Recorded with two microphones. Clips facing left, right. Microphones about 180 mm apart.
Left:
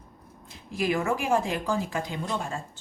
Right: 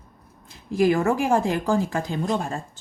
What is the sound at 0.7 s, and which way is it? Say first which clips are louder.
Speech: right 7 dB; 50° right (ahead or behind).